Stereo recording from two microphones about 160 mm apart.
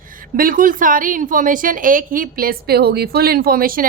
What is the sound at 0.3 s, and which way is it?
A woman's voice, 60° right (ahead or behind).